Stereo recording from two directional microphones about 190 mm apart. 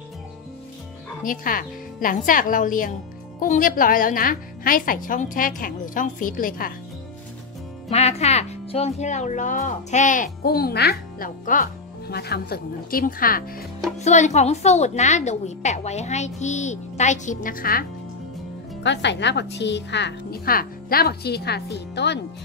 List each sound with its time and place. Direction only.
1.2 s speech: 45° left (ahead or behind)
7.9 s speech: 35° left (ahead or behind); by 13.4 s 50° left (ahead or behind)
13.9 s a woman's voice: 35° left (ahead or behind)
18.8 s a child's voice: 65° left (ahead or behind)